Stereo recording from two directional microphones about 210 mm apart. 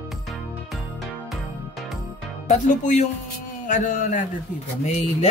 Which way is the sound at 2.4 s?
35° left (ahead or behind).